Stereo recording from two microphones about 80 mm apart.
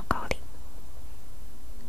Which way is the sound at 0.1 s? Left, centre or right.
Centre.